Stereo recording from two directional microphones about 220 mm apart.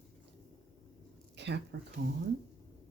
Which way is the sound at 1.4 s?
50° right (ahead or behind).